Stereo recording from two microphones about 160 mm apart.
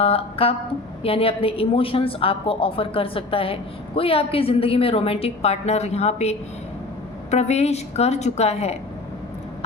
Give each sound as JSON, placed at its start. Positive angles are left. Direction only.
{"t": 0.0, "sound": "a woman's voice", "side_deg": 35}